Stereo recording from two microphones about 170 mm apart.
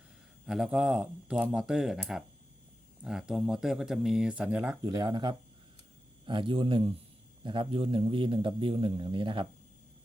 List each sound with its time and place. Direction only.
0.4 s a man's voice: 5° right (ahead or behind); by 9.5 s 30° right (ahead or behind)